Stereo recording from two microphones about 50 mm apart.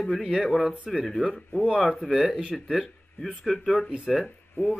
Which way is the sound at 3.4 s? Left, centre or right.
Centre.